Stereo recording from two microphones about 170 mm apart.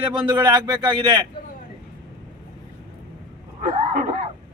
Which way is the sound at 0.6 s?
25° right (ahead or behind).